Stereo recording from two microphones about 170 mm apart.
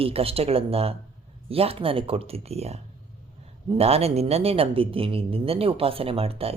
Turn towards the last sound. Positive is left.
turn(degrees=-35)  # may be behind; listen again after turning